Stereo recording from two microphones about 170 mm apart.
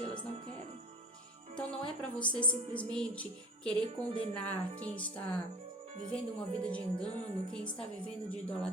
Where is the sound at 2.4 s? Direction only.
5° left (ahead or behind).